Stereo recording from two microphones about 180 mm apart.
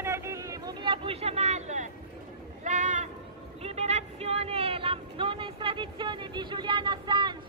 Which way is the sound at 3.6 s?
35° right (ahead or behind).